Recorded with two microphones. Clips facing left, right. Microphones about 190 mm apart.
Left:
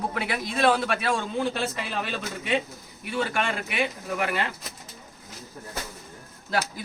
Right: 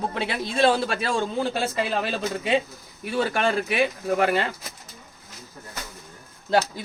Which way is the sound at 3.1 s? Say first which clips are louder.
Right 4 dB; 35° right (ahead or behind).